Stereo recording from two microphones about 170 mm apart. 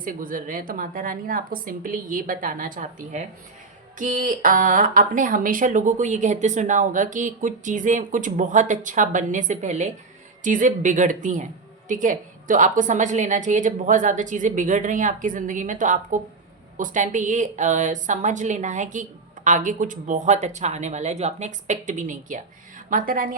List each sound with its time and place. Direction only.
0.0 s speech: 55° right (ahead or behind)